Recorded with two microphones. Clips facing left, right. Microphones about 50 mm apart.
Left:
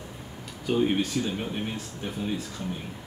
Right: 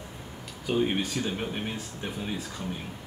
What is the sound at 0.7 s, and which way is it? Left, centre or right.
Speech, centre.